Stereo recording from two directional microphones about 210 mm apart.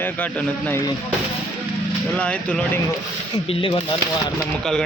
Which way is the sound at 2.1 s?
5° left (ahead or behind).